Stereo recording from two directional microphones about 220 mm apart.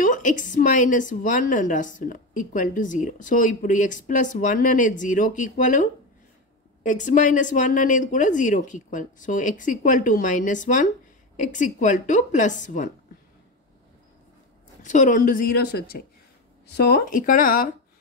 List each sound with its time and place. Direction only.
0.0 s a woman's voice: 35° left (ahead or behind)
14.8 s a woman's voice: 35° left (ahead or behind)